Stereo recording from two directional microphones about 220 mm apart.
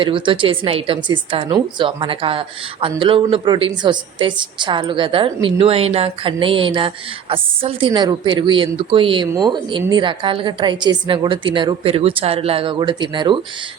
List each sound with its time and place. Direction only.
0.0 s speech: 20° right (ahead or behind)